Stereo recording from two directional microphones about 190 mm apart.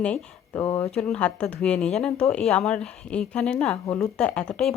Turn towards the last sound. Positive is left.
turn(degrees=5)  # may be behind; listen again after turning